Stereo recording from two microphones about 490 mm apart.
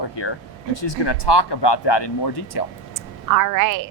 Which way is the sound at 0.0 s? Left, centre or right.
Left.